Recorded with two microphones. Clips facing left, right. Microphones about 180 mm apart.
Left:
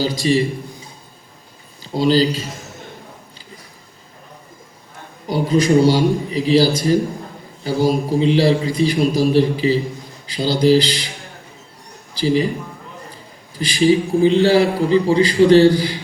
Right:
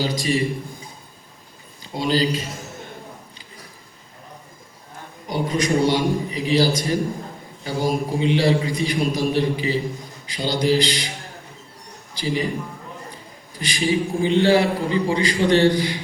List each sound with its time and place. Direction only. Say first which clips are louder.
0.0 s a man's voice: left 5 dB; 30° left (ahead or behind)
1.8 s a man's voice: left 6 dB; 30° left (ahead or behind)
5.3 s a man's voice: left 6 dB; 30° left (ahead or behind)
12.2 s a man's voice: left 7 dB; 35° left (ahead or behind)
13.6 s a man's voice: left 7 dB; 30° left (ahead or behind)